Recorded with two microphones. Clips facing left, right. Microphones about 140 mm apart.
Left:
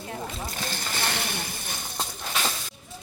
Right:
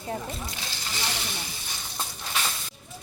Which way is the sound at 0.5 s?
50° left (ahead or behind).